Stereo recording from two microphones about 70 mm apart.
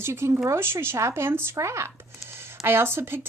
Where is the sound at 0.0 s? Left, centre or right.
Right.